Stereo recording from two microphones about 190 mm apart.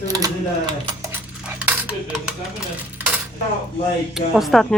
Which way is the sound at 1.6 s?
10° right (ahead or behind).